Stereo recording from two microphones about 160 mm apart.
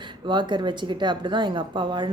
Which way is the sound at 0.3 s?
30° right (ahead or behind).